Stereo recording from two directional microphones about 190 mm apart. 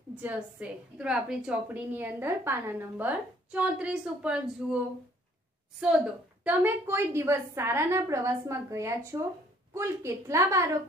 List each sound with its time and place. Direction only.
0.2 s a woman's voice: 10° right (ahead or behind)
6.4 s a woman's voice: 10° right (ahead or behind)